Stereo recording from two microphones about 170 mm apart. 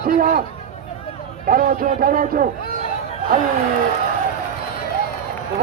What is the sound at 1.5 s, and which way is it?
A man's voice, 55° right (ahead or behind).